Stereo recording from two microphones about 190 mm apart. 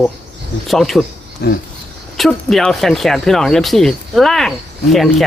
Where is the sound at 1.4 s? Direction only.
55° left (ahead or behind).